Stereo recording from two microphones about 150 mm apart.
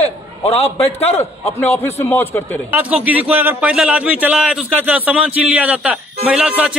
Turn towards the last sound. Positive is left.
turn(degrees=-5)  # may be behind; listen again after turning